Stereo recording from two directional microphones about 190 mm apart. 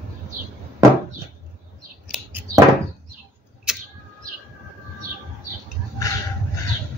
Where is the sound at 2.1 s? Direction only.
10° right (ahead or behind).